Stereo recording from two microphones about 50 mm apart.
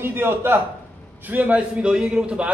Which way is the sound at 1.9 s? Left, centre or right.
Centre.